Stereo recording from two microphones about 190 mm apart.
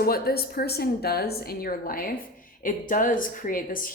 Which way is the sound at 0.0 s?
55° left (ahead or behind).